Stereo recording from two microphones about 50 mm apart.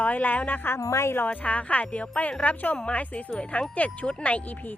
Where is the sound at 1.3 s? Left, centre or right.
Left.